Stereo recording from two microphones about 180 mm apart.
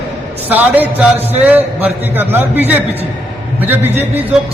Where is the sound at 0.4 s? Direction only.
10° right (ahead or behind).